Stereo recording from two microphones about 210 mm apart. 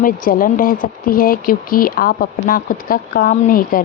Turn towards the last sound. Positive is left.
turn(degrees=40)  # may be behind; listen again after turning